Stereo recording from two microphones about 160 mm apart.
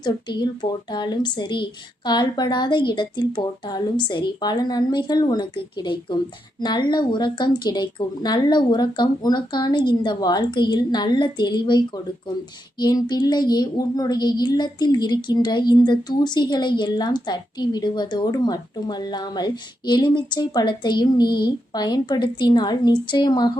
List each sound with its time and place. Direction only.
0.0 s speech: 30° left (ahead or behind)
12.8 s speech: 25° left (ahead or behind)